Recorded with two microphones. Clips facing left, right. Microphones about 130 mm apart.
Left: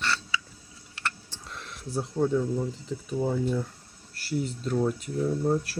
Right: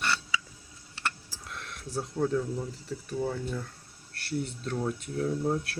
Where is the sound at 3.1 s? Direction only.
15° left (ahead or behind).